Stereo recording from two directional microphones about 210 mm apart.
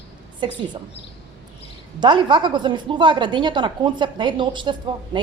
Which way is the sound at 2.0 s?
20° right (ahead or behind).